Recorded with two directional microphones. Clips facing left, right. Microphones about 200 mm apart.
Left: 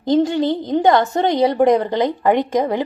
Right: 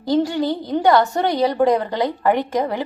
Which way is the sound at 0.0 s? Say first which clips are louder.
Left 3 dB; 20° left (ahead or behind).